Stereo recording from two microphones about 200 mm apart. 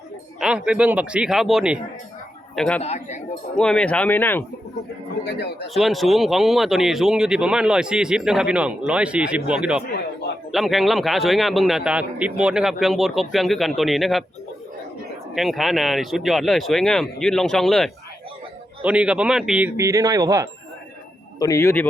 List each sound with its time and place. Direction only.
0.3 s a man's voice: 5° right (ahead or behind)
2.8 s speech: 35° left (ahead or behind)
3.5 s speech: 5° left (ahead or behind)
5.2 s a man's voice: 55° left (ahead or behind)
5.6 s a man's voice: centre (ahead or behind)
9.8 s a man's voice: 55° left (ahead or behind)
10.5 s a man's voice: centre (ahead or behind)
15.4 s a man's voice: centre (ahead or behind); by 20.5 s 15° right (ahead or behind)
21.3 s speech: 15° left (ahead or behind)